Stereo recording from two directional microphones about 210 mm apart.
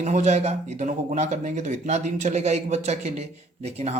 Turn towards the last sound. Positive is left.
turn(degrees=-30)  # may be behind; listen again after turning